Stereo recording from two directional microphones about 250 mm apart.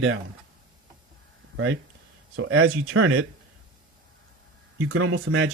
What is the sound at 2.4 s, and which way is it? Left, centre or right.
Speech, right.